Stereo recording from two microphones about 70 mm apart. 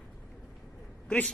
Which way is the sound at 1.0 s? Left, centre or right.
Centre.